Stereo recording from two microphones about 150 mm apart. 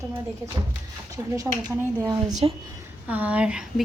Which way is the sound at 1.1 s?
20° right (ahead or behind).